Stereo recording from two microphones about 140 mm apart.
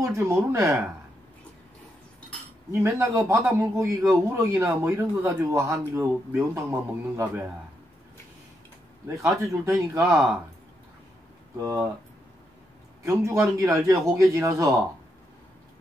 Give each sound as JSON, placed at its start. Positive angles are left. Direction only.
{"t": 0.0, "sound": "speech", "side_deg": -20}
{"t": 2.7, "sound": "speech", "side_deg": -20}
{"t": 9.0, "sound": "speech", "side_deg": -20}
{"t": 13.0, "sound": "speech", "side_deg": -20}